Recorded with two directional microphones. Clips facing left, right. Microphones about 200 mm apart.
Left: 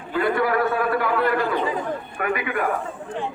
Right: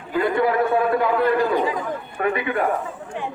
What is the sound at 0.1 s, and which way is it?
A man's voice, 20° right (ahead or behind).